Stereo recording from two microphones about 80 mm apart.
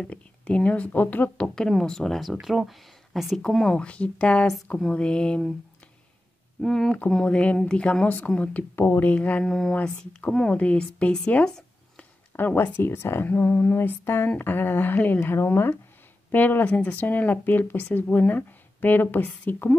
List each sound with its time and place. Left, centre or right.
0.0 s speech: centre
1.5 s speech: centre
6.6 s speech: centre
7.2 s speech: centre
8.8 s speech: left
9.1 s speech: centre
9.4 s speech: centre
9.8 s a woman's voice: centre
12.4 s speech: left